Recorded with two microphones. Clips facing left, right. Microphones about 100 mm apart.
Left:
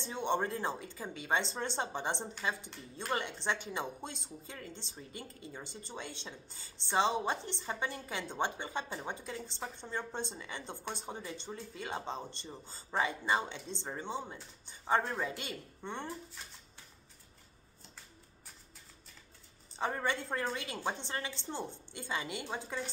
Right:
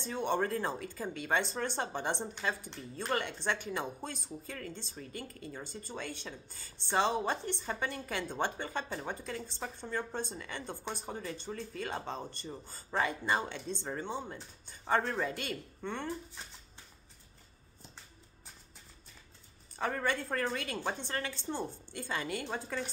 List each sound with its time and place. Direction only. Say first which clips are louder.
0.0 s speech: right 1 dB; 20° left (ahead or behind)
19.7 s speech: right 1 dB; 20° left (ahead or behind)